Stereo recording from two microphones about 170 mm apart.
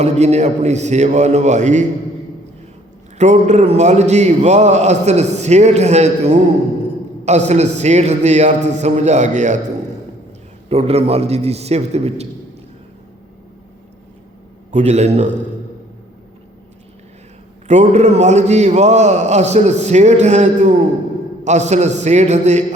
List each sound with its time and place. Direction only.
0.0 s a man's voice: 40° right (ahead or behind)
3.2 s a man's voice: 40° right (ahead or behind)
10.7 s a man's voice: 40° right (ahead or behind)
14.7 s a man's voice: 40° right (ahead or behind)
17.7 s a man's voice: 40° right (ahead or behind)